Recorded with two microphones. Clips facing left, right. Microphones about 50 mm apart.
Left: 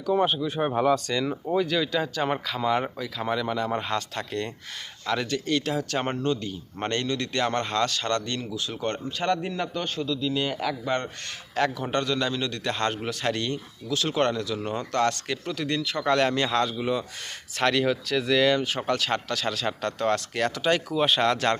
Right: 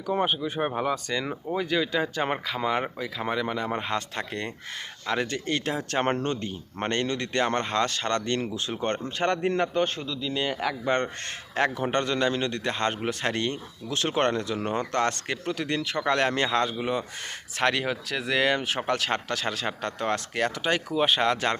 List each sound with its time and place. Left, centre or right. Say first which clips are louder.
0.0 s speech: left 2 dB; centre
0.7 s speech: left 9 dB; centre
0.9 s speech: left 3 dB; centre; by 6.1 s right
6.1 s speech: left 2 dB; right
10.2 s speech: right 1 dB; centre
10.6 s speech: right 1 dB; right